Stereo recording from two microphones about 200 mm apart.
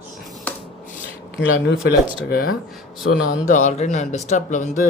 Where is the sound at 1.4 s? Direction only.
60° left (ahead or behind).